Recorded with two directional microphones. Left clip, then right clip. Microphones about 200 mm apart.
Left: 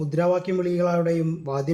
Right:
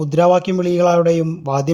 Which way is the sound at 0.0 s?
30° right (ahead or behind).